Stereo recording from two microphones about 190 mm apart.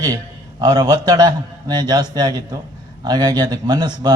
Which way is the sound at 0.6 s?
20° right (ahead or behind).